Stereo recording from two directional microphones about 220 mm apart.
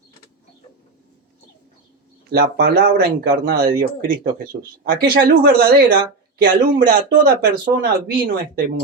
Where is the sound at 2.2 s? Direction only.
45° right (ahead or behind).